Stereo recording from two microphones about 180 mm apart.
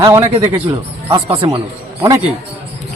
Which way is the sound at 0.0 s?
15° right (ahead or behind).